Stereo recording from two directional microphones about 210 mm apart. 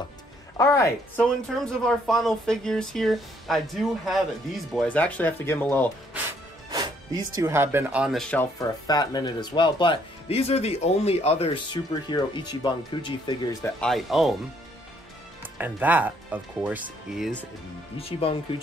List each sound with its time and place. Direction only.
0.6 s speech: 15° left (ahead or behind)
6.7 s speech: 20° right (ahead or behind); by 8.5 s 5° left (ahead or behind)
8.5 s speech: 20° left (ahead or behind)
13.7 s speech: centre (ahead or behind)
15.4 s speech: 10° right (ahead or behind)
17.9 s speech: 25° left (ahead or behind)